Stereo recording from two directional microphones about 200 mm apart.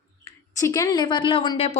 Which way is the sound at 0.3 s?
15° left (ahead or behind).